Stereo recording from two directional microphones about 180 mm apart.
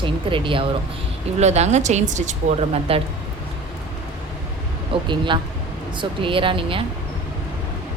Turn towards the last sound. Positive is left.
turn(degrees=-30)  # may be behind; listen again after turning